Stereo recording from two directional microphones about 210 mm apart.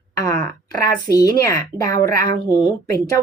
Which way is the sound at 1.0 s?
15° left (ahead or behind).